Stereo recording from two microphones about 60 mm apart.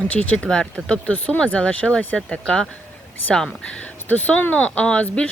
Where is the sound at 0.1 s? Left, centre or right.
Left.